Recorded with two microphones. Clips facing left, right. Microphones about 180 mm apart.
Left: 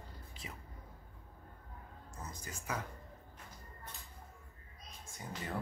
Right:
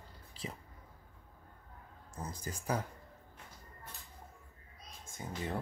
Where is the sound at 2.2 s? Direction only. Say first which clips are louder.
Right 6 dB; 35° right (ahead or behind).